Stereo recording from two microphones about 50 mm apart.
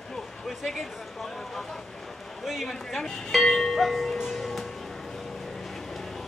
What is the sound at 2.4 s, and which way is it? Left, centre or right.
Speech, centre.